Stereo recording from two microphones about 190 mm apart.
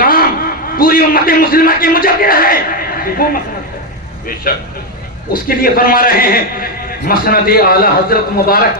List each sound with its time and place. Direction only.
0.0 s a man's voice: 50° left (ahead or behind)
4.5 s a man's voice: 50° left (ahead or behind)